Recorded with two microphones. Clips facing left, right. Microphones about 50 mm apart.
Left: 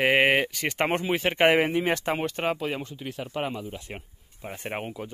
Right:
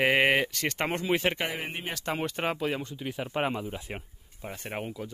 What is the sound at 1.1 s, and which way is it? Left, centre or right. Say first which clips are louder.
Speech: even; centre.